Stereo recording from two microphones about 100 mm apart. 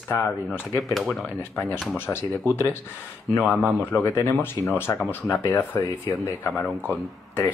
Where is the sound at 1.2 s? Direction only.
20° left (ahead or behind).